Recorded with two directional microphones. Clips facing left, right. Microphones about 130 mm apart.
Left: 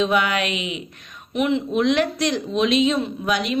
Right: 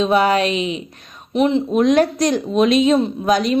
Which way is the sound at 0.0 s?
35° right (ahead or behind).